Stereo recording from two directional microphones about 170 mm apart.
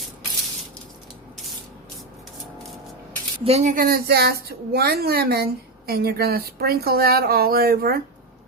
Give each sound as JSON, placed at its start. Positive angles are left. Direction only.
{"t": 3.4, "sound": "a woman's voice", "side_deg": -40}